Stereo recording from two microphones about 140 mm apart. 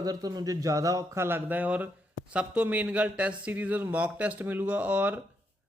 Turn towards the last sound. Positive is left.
turn(degrees=-10)  # may be behind; listen again after turning